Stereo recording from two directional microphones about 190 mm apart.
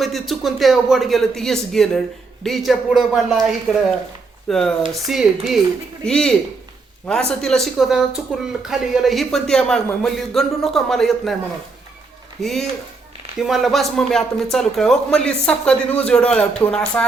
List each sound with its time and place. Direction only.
0.0 s speech: centre (ahead or behind)
12.4 s speech: centre (ahead or behind)